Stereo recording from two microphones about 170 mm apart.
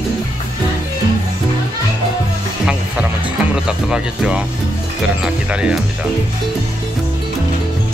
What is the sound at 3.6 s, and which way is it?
Speech, 5° right (ahead or behind).